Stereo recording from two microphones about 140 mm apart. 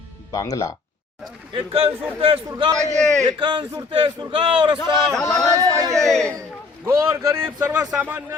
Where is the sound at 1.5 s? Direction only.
45° right (ahead or behind).